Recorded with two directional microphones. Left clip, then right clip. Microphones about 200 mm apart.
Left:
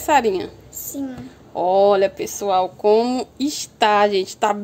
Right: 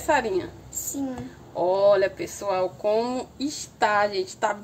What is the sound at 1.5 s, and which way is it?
Speech, 40° left (ahead or behind).